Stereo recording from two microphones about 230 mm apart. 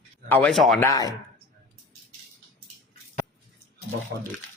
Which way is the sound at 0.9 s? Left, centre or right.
Centre.